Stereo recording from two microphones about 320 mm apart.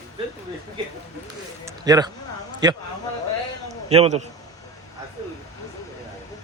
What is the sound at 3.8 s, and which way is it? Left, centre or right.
Speech, centre.